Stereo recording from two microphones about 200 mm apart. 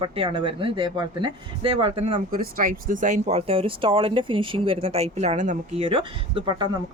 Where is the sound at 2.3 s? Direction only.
45° right (ahead or behind).